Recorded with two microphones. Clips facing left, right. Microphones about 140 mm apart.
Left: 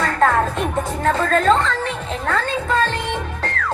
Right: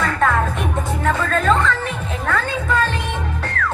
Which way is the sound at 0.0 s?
35° left (ahead or behind).